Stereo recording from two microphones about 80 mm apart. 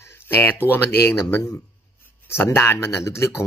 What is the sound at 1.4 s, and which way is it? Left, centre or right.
Speech, left.